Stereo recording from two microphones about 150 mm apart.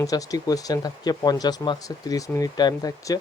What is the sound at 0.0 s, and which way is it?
Speech, 25° left (ahead or behind).